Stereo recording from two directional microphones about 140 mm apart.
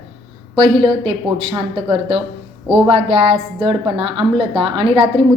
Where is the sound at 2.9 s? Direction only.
45° right (ahead or behind).